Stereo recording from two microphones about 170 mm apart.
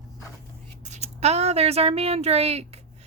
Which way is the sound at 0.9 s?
40° right (ahead or behind).